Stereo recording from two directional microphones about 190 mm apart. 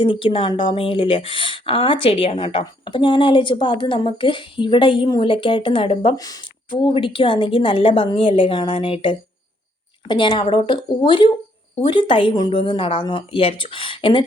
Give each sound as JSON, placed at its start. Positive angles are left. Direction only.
{"t": 0.0, "sound": "speech", "side_deg": 25}